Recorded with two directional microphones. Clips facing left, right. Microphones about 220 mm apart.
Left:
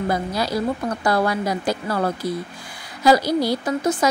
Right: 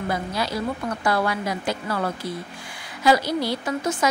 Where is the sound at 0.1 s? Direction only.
40° left (ahead or behind).